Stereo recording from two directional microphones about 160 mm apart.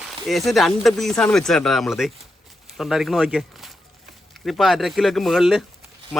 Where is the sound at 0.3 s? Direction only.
Centre (ahead or behind).